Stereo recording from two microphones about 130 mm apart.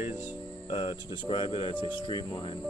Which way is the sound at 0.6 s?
40° left (ahead or behind).